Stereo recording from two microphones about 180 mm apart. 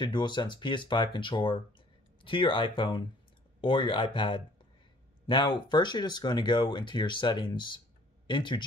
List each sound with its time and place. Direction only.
0.0 s speech: 25° left (ahead or behind)